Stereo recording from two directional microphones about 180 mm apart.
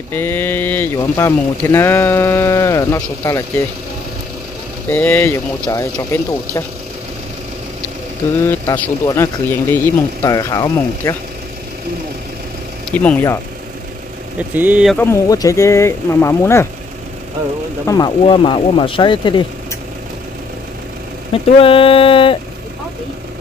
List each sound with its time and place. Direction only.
0.1 s speech: 10° left (ahead or behind)
4.8 s speech: 10° left (ahead or behind)
8.4 s speech: 10° left (ahead or behind)
12.9 s speech: 10° left (ahead or behind)
14.5 s speech: 10° right (ahead or behind)
15.0 s speech: 15° left (ahead or behind)
17.8 s speech: 20° left (ahead or behind)
21.3 s speech: 30° left (ahead or behind)